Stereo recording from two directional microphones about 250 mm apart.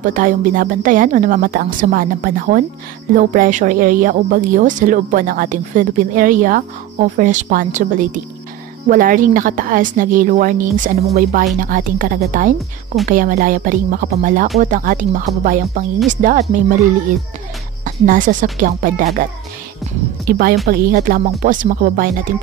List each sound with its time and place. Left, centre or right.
0.0 s a woman's voice: right
17.8 s a woman's voice: right
20.2 s a woman's voice: right